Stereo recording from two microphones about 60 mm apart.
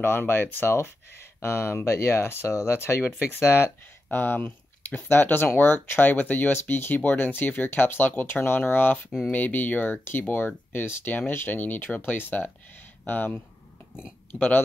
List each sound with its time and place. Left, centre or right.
0.0 s speech: left